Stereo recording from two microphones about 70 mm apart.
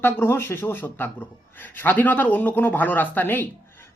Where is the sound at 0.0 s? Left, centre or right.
Left.